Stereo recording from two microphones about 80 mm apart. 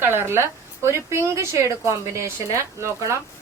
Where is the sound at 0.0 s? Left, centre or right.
Right.